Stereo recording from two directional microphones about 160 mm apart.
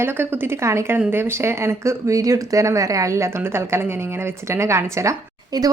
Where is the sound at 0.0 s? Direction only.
15° right (ahead or behind).